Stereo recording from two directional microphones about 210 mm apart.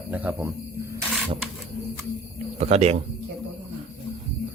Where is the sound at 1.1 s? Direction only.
Centre (ahead or behind).